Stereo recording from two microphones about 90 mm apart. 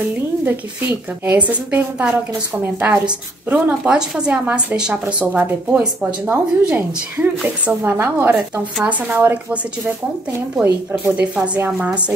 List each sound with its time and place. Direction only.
0.5 s a woman's voice: 20° right (ahead or behind)
11.1 s a woman's voice: 15° right (ahead or behind)